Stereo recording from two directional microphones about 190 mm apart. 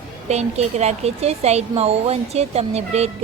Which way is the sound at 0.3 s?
35° right (ahead or behind).